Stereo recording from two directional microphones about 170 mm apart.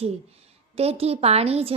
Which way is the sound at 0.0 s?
35° right (ahead or behind).